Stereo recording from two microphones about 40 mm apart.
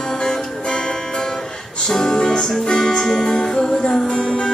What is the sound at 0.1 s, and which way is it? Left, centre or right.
Music, centre.